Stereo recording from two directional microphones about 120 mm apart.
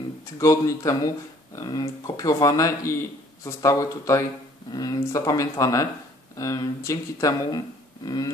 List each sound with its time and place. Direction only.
0.4 s speech: 25° left (ahead or behind)